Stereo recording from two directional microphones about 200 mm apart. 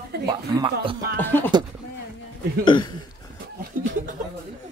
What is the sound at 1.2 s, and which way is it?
Speech, 10° left (ahead or behind).